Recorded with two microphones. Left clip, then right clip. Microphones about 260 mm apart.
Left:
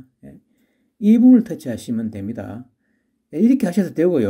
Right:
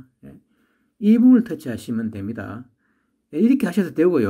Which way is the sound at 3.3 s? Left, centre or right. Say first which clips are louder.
Left 1 dB; centre.